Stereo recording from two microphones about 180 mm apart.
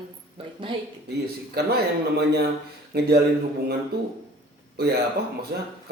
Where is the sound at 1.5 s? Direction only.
65° right (ahead or behind).